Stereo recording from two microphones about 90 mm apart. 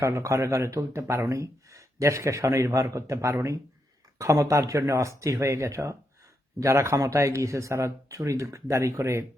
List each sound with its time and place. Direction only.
0.0 s speech: 35° right (ahead or behind)